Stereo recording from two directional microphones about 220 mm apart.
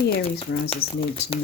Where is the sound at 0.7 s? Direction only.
25° left (ahead or behind).